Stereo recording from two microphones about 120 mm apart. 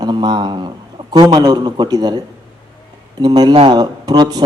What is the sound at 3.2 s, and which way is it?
A man's voice, 35° right (ahead or behind).